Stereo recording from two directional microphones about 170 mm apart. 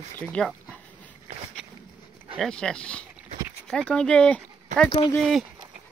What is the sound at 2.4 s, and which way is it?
Speech, 5° left (ahead or behind).